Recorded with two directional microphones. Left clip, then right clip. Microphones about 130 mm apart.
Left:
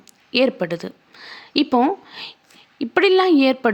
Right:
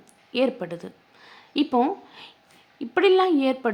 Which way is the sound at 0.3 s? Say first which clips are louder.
Left 6 dB; 35° left (ahead or behind).